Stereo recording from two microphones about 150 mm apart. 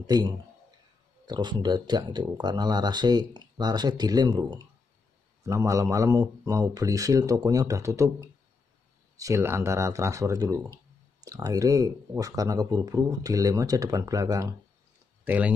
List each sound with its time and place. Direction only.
0.0 s a man's voice: 25° right (ahead or behind)
15.2 s speech: 10° right (ahead or behind)